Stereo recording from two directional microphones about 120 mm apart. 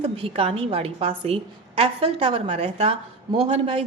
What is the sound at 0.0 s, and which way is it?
A woman's voice, 50° right (ahead or behind).